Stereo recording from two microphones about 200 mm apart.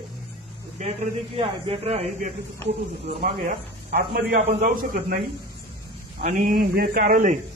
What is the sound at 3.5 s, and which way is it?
A man's voice, 50° right (ahead or behind).